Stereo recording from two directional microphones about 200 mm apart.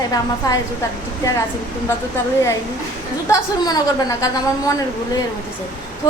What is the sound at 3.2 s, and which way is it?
A woman's voice, 20° left (ahead or behind).